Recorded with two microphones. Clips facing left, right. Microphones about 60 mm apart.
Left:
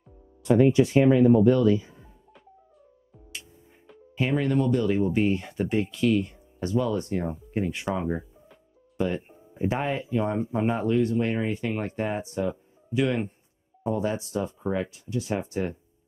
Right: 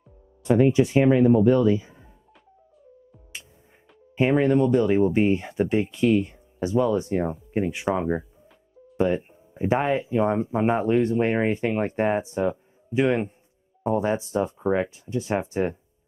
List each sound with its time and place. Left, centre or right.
0.4 s speech: right
4.2 s speech: right
9.3 s music: centre
9.7 s speech: right